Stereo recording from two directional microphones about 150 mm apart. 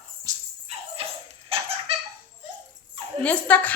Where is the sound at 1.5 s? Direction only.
40° right (ahead or behind).